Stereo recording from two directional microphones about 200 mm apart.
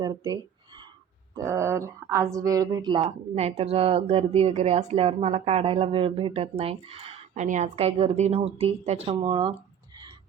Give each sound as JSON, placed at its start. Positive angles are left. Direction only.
{"t": 0.0, "sound": "a woman's voice", "side_deg": -20}
{"t": 1.4, "sound": "a woman's voice", "side_deg": -15}